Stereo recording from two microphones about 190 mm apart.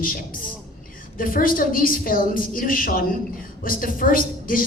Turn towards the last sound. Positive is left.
turn(degrees=50)  # may be behind; listen again after turning